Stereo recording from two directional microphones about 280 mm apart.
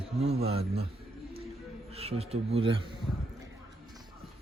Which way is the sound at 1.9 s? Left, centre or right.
Right.